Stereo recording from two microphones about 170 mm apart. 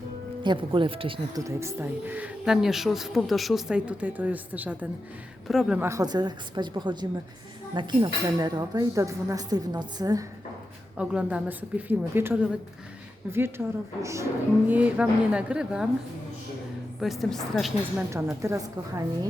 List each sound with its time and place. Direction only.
0.4 s speech: 30° right (ahead or behind)
1.5 s a woman's voice: 15° right (ahead or behind)
5.8 s speech: 20° right (ahead or behind)
10.9 s speech: 5° right (ahead or behind)
13.6 s speech: 10° right (ahead or behind)
17.0 s a woman's voice: centre (ahead or behind)
17.9 s speech: 15° right (ahead or behind)